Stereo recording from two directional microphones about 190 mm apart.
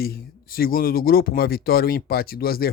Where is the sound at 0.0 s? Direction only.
50° left (ahead or behind).